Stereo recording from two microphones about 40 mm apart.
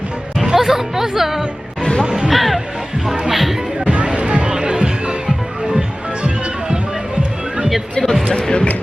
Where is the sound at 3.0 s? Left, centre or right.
Centre.